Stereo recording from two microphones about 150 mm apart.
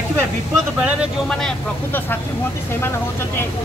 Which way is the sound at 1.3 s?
5° left (ahead or behind).